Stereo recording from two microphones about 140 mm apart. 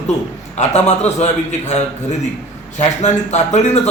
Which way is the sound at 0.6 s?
55° left (ahead or behind).